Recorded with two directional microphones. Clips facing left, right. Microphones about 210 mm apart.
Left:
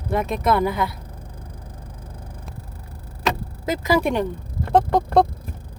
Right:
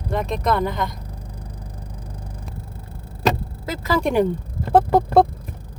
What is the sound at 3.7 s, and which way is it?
Speech, 15° left (ahead or behind).